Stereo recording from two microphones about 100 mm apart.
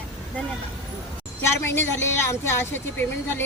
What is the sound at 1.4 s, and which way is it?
Speech, 25° left (ahead or behind).